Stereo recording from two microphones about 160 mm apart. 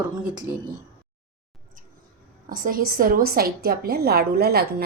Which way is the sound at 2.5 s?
60° right (ahead or behind).